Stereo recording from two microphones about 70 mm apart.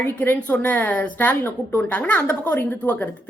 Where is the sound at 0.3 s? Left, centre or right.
Centre.